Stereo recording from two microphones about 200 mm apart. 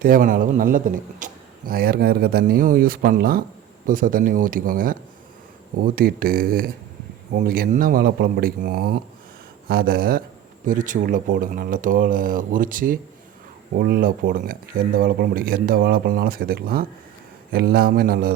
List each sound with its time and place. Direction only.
0.0 s a man's voice: 45° right (ahead or behind)